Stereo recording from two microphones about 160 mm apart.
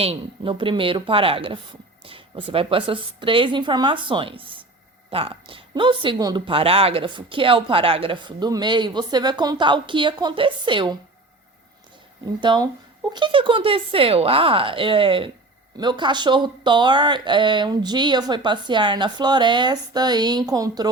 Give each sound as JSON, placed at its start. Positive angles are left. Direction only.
{"t": 0.0, "sound": "speech", "side_deg": -35}
{"t": 12.2, "sound": "speech", "side_deg": -25}